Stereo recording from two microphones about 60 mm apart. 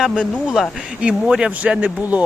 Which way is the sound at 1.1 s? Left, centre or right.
Centre.